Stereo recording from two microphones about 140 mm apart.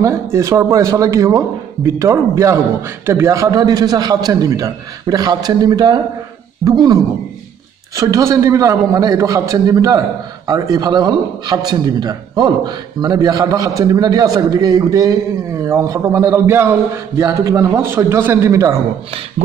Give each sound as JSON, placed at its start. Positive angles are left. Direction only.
{"t": 0.0, "sound": "a man's voice", "side_deg": -20}